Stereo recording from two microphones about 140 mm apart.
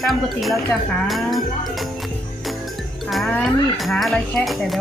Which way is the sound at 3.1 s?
Centre (ahead or behind).